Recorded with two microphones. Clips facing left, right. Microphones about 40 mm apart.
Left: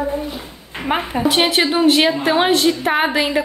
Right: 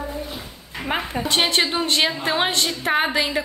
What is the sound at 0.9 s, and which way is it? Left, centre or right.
A woman's voice, centre.